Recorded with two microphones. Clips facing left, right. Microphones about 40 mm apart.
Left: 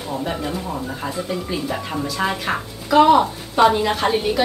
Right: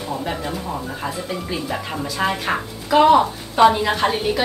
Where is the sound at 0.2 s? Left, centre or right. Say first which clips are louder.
Left 1 dB; centre.